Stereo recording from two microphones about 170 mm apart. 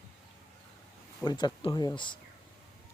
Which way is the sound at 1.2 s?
25° left (ahead or behind).